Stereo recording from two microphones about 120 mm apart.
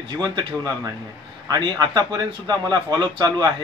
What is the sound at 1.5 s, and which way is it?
Speech, 35° right (ahead or behind).